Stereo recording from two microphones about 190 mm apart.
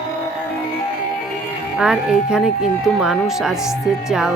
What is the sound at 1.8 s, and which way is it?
Speech, 5° right (ahead or behind).